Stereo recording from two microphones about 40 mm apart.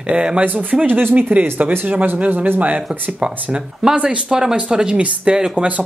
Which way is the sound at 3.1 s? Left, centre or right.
Right.